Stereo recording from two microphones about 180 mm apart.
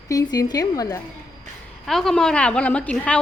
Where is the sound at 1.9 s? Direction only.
Centre (ahead or behind).